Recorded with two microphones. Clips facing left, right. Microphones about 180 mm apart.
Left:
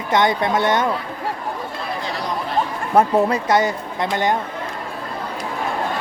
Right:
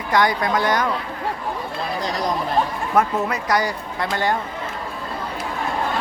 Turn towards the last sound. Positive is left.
turn(degrees=20)  # may be behind; listen again after turning